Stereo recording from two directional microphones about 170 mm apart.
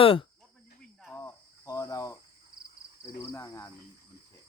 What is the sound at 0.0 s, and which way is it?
Speech, 30° left (ahead or behind).